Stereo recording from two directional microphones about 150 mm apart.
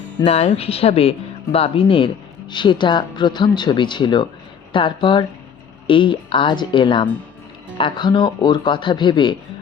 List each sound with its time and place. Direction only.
0.3 s speech: 40° left (ahead or behind)